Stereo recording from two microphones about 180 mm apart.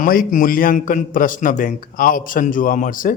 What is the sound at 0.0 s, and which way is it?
A man's voice, 50° left (ahead or behind).